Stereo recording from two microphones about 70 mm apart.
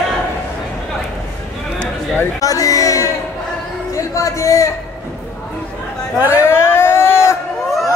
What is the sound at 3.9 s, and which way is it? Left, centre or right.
Music, left.